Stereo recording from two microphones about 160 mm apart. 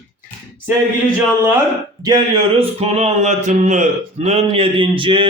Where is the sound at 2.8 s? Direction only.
40° right (ahead or behind).